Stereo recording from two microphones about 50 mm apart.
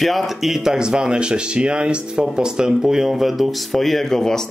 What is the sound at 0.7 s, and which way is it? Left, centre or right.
Speech, centre.